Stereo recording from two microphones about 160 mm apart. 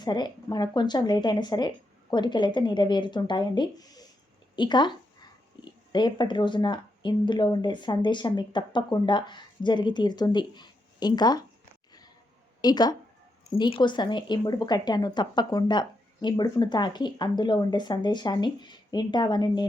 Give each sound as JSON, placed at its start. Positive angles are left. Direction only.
{"t": 0.0, "sound": "speech", "side_deg": 25}
{"t": 12.6, "sound": "speech", "side_deg": 25}